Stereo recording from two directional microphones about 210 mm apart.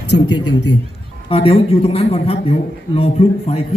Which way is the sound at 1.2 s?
25° left (ahead or behind).